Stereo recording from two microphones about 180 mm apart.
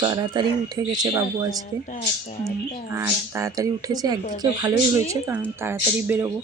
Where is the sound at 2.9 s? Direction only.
15° right (ahead or behind).